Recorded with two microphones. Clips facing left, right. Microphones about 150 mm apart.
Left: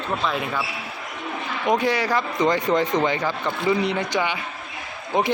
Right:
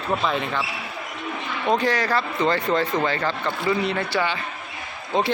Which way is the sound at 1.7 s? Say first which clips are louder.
Even; 10° left (ahead or behind).